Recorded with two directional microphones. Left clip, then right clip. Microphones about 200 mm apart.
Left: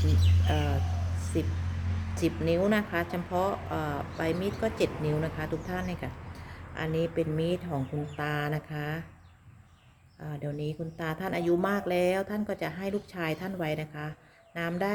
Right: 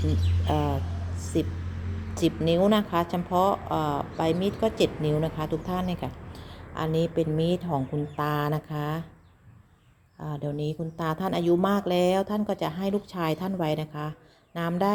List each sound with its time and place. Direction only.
0.4 s speech: 15° right (ahead or behind)
1.2 s a sound: 20° right (ahead or behind)
2.1 s a woman's voice: 20° right (ahead or behind)
10.2 s a woman's voice: 20° right (ahead or behind)